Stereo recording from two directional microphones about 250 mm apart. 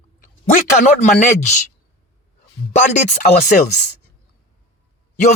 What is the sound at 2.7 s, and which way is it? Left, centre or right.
Chopping, left.